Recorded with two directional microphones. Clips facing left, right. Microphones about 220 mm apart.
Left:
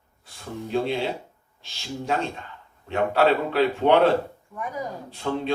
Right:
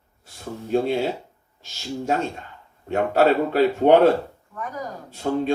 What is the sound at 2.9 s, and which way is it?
Speech, 45° right (ahead or behind).